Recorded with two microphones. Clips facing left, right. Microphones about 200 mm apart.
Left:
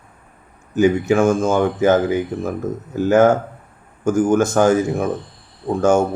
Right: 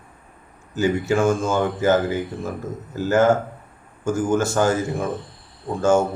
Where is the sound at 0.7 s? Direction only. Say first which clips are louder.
Left 5 dB; 15° left (ahead or behind).